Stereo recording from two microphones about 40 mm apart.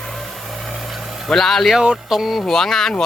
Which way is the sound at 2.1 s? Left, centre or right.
Centre.